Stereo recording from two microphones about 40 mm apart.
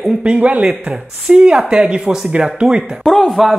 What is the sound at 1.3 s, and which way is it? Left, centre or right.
Speech, right.